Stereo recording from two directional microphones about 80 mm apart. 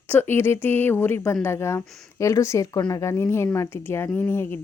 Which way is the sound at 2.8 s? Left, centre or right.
Left.